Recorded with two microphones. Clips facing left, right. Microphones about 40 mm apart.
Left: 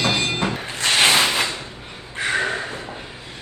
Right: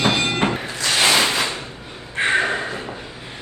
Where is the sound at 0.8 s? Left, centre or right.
Left.